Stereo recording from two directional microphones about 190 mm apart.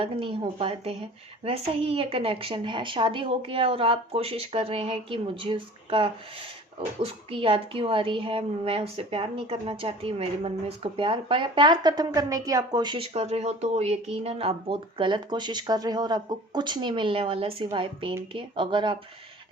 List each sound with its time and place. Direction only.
0.0 s speech: 30° right (ahead or behind)